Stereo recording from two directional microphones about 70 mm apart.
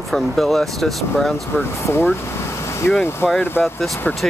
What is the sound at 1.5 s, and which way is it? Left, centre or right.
Speech, left.